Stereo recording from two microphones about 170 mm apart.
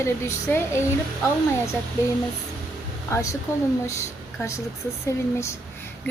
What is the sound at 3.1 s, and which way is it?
A woman's voice, 15° left (ahead or behind).